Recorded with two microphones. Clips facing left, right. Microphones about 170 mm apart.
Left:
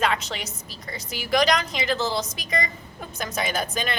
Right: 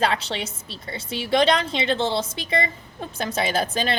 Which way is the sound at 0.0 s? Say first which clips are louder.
Right 2 dB; 30° right (ahead or behind).